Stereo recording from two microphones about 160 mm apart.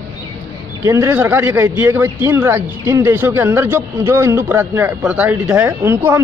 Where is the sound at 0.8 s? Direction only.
20° right (ahead or behind).